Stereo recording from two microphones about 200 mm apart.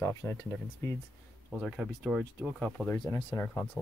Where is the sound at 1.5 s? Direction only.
5° left (ahead or behind).